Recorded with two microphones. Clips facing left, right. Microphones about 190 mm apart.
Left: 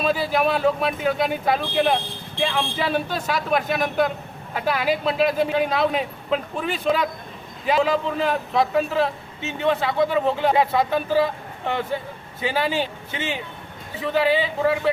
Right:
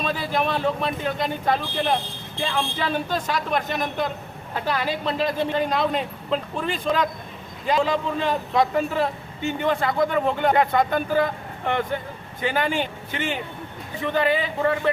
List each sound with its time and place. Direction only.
0.0 s speech: 10° left (ahead or behind)
14.0 s speech: 5° left (ahead or behind)